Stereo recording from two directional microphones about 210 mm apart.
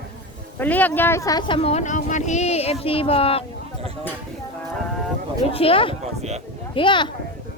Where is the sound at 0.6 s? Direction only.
10° left (ahead or behind); by 3.4 s 25° left (ahead or behind).